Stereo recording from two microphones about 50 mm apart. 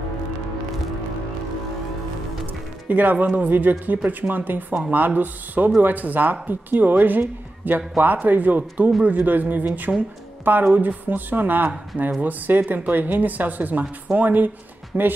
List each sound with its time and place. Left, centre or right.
2.4 s speech: right